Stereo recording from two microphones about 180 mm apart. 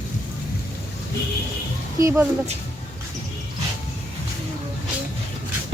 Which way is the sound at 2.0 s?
15° right (ahead or behind).